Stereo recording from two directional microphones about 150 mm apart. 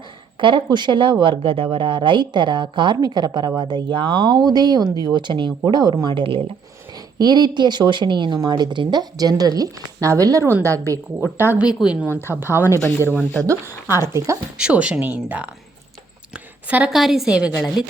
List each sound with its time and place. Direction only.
0.3 s a woman's voice: 35° right (ahead or behind); by 12.0 s 5° right (ahead or behind)
12.0 s speech: 15° left (ahead or behind)
13.4 s speech: 20° right (ahead or behind)
14.6 s speech: 10° right (ahead or behind)
16.6 s speech: 10° right (ahead or behind)